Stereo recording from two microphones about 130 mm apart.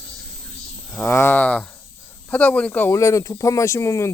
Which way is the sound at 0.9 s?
15° left (ahead or behind).